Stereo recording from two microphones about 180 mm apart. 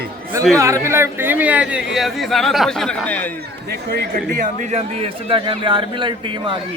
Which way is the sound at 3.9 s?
55° right (ahead or behind).